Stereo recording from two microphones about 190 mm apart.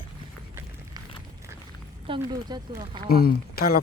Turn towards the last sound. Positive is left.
turn(degrees=50)  # may be behind; listen again after turning